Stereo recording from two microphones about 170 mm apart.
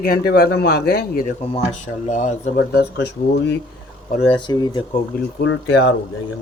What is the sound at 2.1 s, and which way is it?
Speech, 45° left (ahead or behind).